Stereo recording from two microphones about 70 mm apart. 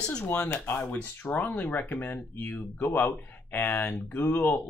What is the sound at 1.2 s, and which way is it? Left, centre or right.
Speech, left.